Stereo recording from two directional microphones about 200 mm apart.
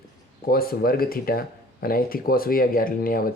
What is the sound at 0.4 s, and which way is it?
Speech, 50° left (ahead or behind).